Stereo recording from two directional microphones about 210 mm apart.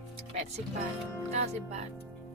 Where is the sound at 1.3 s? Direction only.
30° right (ahead or behind).